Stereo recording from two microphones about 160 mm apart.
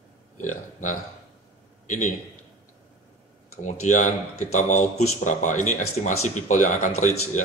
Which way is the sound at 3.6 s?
50° left (ahead or behind).